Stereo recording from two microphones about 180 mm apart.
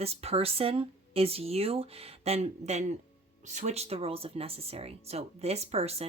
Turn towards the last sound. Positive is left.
turn(degrees=-35)  # may be behind; listen again after turning